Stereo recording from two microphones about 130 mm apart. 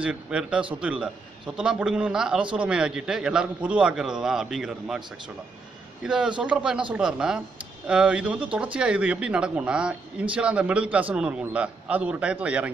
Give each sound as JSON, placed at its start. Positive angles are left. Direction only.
{"t": 0.0, "sound": "a man's voice", "side_deg": -5}
{"t": 6.0, "sound": "a man's voice", "side_deg": -5}